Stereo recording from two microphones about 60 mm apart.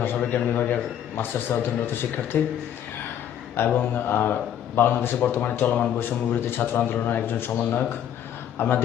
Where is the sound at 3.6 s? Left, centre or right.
Left.